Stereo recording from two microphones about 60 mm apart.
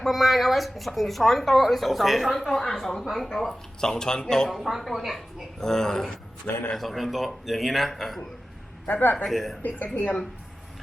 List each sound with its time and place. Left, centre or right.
0.0 s speech: centre
8.9 s a woman's voice: left
9.1 s speech: centre
9.6 s a woman's voice: left